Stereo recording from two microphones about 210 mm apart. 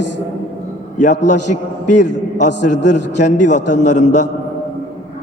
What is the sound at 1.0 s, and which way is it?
Speech, 35° left (ahead or behind).